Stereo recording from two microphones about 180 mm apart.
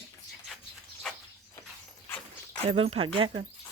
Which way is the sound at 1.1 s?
5° left (ahead or behind).